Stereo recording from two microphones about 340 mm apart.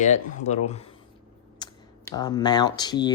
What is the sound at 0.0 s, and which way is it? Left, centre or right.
Speech, left.